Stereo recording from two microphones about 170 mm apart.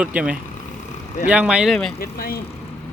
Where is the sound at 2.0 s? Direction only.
60° left (ahead or behind).